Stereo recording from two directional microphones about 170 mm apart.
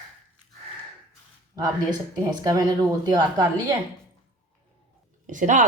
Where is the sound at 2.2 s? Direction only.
20° right (ahead or behind).